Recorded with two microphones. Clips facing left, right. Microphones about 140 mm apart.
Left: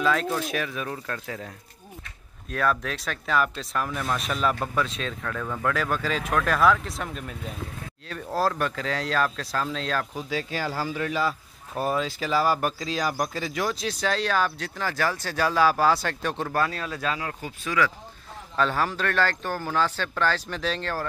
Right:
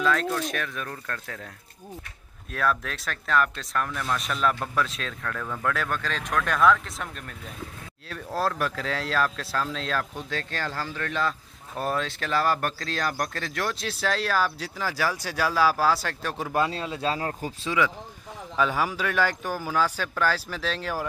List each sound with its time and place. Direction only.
0.0 s speech: 5° left (ahead or behind)
2.5 s speech: centre (ahead or behind)
16.5 s speech: 20° right (ahead or behind)
17.2 s speech: 40° right (ahead or behind)
17.6 s speech: 20° right (ahead or behind)
18.6 s speech: 10° right (ahead or behind)